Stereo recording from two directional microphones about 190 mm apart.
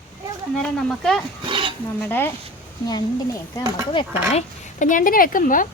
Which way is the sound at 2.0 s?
10° left (ahead or behind).